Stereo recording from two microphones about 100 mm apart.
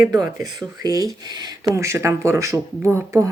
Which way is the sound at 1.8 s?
30° right (ahead or behind).